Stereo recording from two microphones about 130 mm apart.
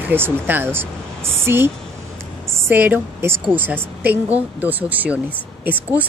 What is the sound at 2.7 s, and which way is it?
Speech, 15° right (ahead or behind).